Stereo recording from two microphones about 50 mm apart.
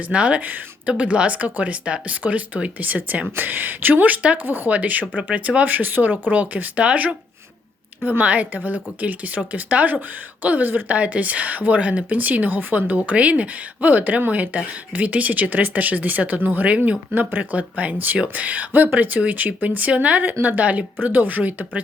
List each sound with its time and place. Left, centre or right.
0.1 s a woman's voice: right
4.4 s a woman's voice: right
8.2 s speech: right
10.9 s a woman's voice: right
16.7 s a woman's voice: right
17.2 s a woman's voice: right